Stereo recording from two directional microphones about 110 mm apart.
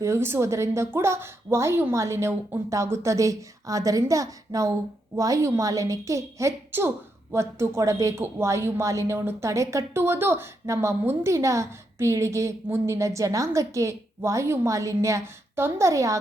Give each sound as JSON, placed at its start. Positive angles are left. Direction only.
{"t": 0.0, "sound": "a woman's voice", "side_deg": -25}